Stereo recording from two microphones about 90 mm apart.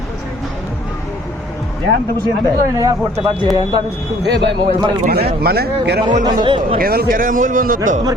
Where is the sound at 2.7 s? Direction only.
40° right (ahead or behind).